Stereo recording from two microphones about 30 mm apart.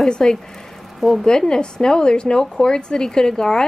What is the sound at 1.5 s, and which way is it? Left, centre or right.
A woman's voice, left.